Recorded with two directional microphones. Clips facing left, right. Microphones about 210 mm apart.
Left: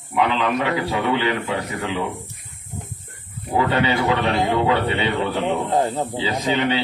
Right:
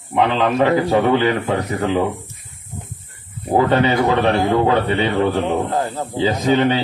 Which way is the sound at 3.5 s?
45° right (ahead or behind).